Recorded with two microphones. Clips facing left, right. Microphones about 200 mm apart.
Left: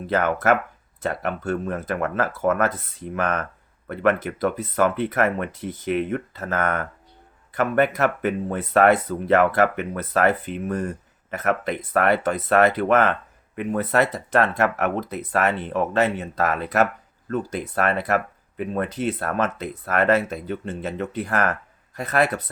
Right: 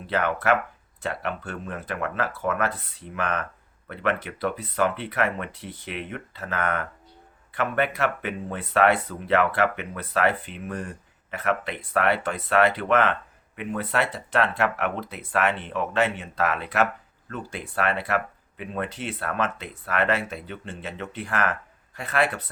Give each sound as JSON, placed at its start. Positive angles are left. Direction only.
{"t": 0.1, "sound": "speech", "side_deg": 45}